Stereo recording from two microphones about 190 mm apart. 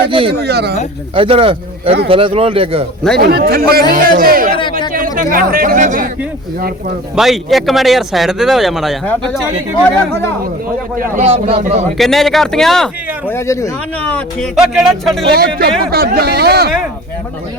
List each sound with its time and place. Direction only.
0.0 s speech: 30° right (ahead or behind)
0.4 s speech: 60° right (ahead or behind)
1.1 s speech: 30° right (ahead or behind)
3.2 s speech: 55° right (ahead or behind)
7.2 s speech: centre (ahead or behind)
10.9 s speech: 45° right (ahead or behind)
11.9 s speech: centre (ahead or behind)
13.3 s speech: 15° left (ahead or behind)
14.1 s speech: 5° left (ahead or behind)
15.3 s speech: 55° right (ahead or behind)